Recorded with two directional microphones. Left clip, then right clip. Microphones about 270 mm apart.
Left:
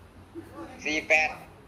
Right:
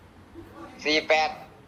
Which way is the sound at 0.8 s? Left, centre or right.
Right.